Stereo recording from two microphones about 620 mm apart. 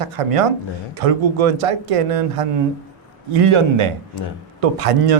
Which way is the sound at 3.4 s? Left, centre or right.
Right.